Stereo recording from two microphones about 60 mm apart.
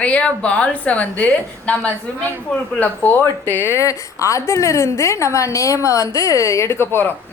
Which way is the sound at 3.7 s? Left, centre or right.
Left.